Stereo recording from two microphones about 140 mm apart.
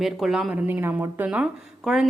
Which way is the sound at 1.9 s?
5° right (ahead or behind).